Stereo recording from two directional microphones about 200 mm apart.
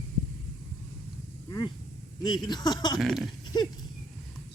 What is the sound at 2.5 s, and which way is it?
Speech, 20° left (ahead or behind).